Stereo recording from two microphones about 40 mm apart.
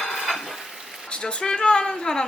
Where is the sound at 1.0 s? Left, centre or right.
Left.